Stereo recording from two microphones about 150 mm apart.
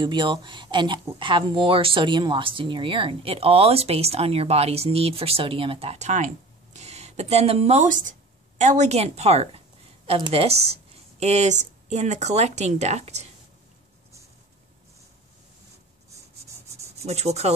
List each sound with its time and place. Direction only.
0.0 s a woman's voice: 30° right (ahead or behind); by 13.3 s 45° right (ahead or behind)
17.0 s a woman's voice: 45° right (ahead or behind)